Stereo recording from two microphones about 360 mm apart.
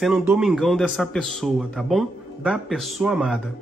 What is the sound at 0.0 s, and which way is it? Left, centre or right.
Speech, centre.